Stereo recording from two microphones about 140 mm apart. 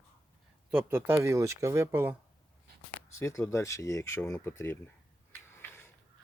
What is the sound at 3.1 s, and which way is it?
Speech, 20° left (ahead or behind).